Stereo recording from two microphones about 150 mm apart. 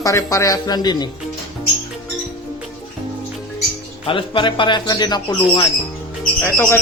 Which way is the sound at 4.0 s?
35° left (ahead or behind).